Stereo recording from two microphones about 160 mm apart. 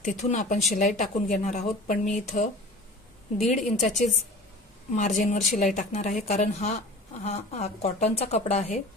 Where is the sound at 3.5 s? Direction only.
50° left (ahead or behind).